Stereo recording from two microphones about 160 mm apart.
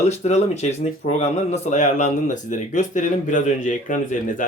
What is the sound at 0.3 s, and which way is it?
Speech, 45° left (ahead or behind).